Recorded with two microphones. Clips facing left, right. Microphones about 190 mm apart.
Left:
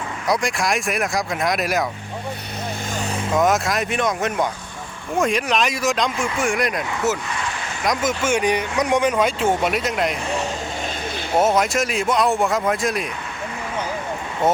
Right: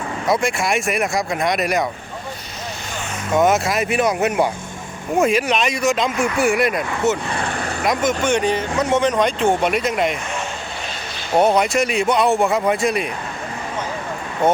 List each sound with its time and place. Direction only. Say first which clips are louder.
0.3 s speech: right 2 dB; centre (ahead or behind)
3.3 s speech: right 3 dB; centre (ahead or behind)
7.4 s vehicle: right 5 dB; 55° right (ahead or behind)
7.9 s speech: right 2 dB; 5° left (ahead or behind)
11.3 s speech: right 3 dB; centre (ahead or behind)